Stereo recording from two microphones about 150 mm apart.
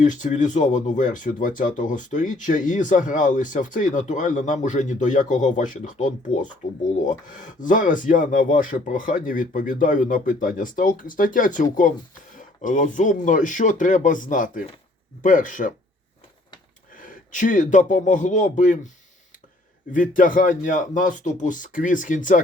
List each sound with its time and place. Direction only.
0.0 s speech: 55° left (ahead or behind)
16.9 s speech: 65° left (ahead or behind)
19.9 s speech: 60° left (ahead or behind)